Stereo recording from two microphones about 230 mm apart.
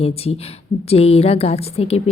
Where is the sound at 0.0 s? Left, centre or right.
Left.